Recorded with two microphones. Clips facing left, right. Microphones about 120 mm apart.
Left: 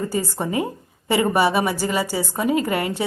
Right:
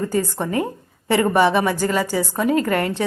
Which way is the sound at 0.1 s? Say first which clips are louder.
Right 2 dB; 10° left (ahead or behind).